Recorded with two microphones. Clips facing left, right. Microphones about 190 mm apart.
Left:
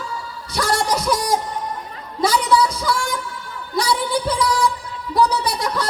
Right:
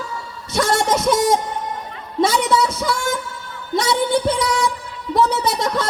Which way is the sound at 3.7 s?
25° right (ahead or behind).